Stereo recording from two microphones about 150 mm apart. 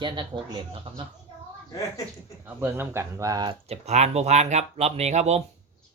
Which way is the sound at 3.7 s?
45° right (ahead or behind).